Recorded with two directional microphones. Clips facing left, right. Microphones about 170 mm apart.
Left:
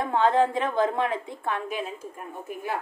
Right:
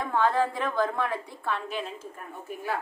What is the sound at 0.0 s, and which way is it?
A woman's voice, 20° left (ahead or behind).